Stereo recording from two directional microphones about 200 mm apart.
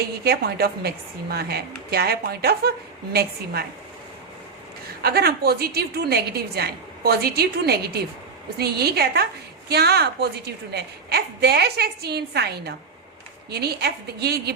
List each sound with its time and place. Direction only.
0.3 s a woman's voice: 50° right (ahead or behind)
5.0 s a woman's voice: 50° right (ahead or behind)